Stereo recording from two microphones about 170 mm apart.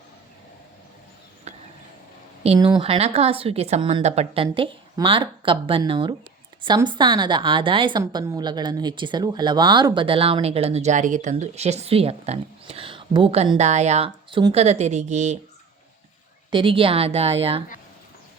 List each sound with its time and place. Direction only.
1.5 s a sound: 40° right (ahead or behind)
2.6 s a woman's voice: 25° right (ahead or behind); by 15.4 s 45° right (ahead or behind)
16.5 s a woman's voice: 30° right (ahead or behind)